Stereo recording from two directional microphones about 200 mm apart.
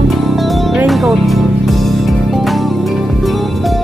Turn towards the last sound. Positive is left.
turn(degrees=0)  # may be behind; listen again after turning